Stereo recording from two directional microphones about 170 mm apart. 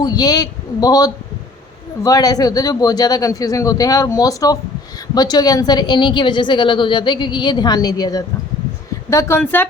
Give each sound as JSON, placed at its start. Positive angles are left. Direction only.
{"t": 0.0, "sound": "a woman's voice", "side_deg": 25}